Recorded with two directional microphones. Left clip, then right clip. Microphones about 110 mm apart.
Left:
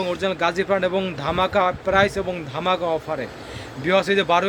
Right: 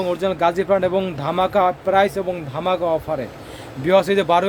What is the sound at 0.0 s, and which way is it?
Speech, 25° right (ahead or behind).